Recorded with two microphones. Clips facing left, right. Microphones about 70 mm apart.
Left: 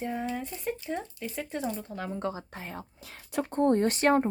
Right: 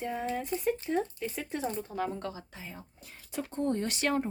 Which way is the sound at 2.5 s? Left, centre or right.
Left.